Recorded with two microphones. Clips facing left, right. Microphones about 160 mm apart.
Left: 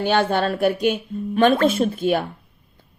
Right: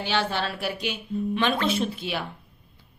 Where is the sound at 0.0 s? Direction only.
50° left (ahead or behind).